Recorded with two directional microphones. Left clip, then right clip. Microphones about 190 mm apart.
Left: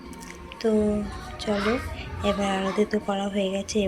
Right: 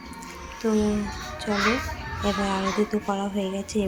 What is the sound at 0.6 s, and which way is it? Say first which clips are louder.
Speech: left 1 dB; 5° right (ahead or behind).